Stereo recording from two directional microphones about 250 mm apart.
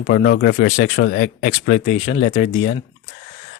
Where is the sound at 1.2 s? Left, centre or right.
Left.